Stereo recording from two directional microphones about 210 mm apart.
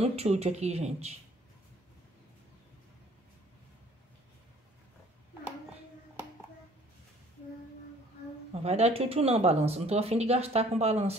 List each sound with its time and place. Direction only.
0.0 s speech: 30° right (ahead or behind)
8.6 s speech: 30° right (ahead or behind)